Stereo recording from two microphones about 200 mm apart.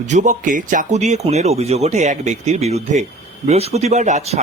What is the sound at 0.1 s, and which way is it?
Speech, 40° right (ahead or behind).